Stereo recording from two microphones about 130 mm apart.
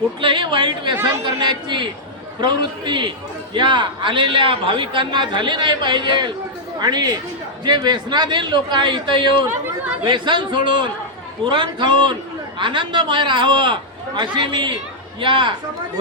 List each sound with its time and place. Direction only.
0.2 s chatter: 40° right (ahead or behind)
1.0 s a man's voice: 35° right (ahead or behind)